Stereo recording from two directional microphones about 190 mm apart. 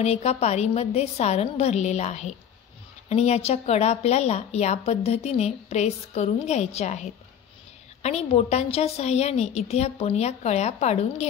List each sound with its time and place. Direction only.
0.0 s a woman's voice: 35° left (ahead or behind)